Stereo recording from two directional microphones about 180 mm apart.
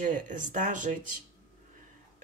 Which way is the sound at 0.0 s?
45° right (ahead or behind).